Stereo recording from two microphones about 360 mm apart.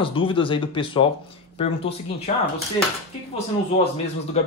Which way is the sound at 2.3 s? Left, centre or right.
Centre.